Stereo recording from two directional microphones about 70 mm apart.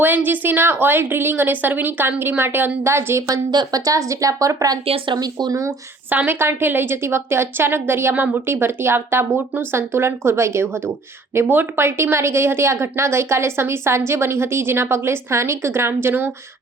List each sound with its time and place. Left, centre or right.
0.0 s a woman's voice: right
3.5 s speech: right
6.1 s a woman's voice: right